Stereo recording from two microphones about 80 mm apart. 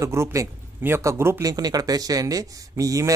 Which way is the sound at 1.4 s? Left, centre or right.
Right.